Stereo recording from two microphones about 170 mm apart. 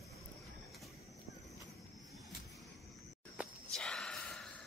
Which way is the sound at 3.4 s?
10° right (ahead or behind).